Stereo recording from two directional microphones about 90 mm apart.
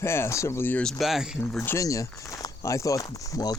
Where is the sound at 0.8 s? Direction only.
Centre (ahead or behind).